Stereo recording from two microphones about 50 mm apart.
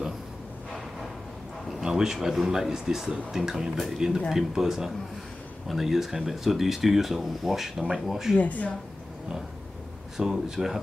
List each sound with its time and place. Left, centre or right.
1.8 s a man's voice: centre
8.4 s speech: left
10.1 s speech: centre